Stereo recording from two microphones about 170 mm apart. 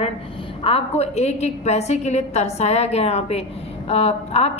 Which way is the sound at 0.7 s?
35° left (ahead or behind).